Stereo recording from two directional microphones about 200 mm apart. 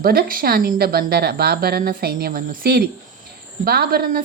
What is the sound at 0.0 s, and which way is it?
A woman's voice, 45° right (ahead or behind).